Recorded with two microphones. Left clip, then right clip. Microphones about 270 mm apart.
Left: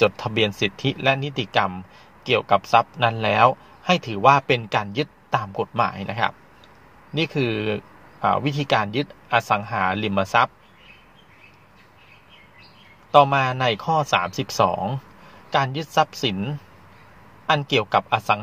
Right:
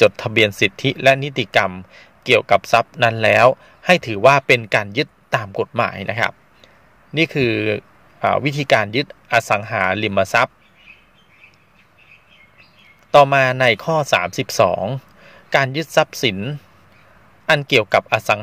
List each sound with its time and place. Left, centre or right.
0.1 s a man's voice: right
7.5 s speech: right
8.2 s a man's voice: right
13.1 s a man's voice: right
17.6 s a man's voice: right